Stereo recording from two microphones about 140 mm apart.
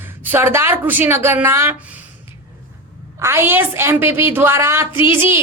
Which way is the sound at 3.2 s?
15° right (ahead or behind).